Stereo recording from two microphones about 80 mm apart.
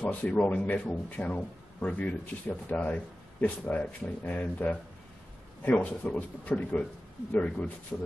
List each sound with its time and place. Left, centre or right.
0.0 s a man's voice: centre